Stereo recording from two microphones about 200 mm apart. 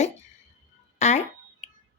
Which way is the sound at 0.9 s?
35° left (ahead or behind).